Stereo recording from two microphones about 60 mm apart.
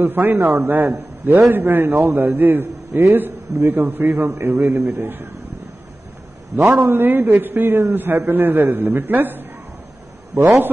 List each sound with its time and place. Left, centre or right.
0.0 s a man's voice: right
6.8 s a man's voice: right